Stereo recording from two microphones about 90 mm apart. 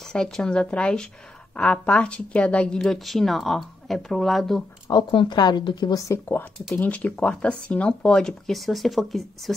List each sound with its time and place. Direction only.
0.1 s speech: 10° left (ahead or behind)
5.1 s a woman's voice: 55° left (ahead or behind)
6.0 s speech: 25° left (ahead or behind)
6.7 s speech: 15° left (ahead or behind)